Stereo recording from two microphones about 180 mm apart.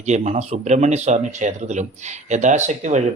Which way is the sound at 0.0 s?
40° right (ahead or behind).